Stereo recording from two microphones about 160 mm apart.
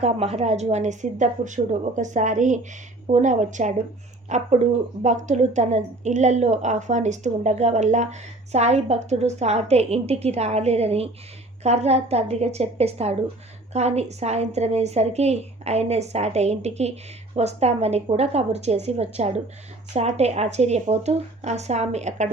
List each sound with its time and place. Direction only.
0.0 s a woman's voice: 40° right (ahead or behind)